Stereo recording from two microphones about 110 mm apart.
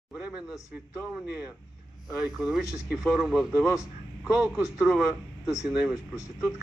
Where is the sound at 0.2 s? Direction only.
10° right (ahead or behind).